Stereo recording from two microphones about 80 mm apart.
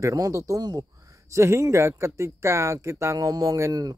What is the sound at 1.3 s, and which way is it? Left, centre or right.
Speech, right.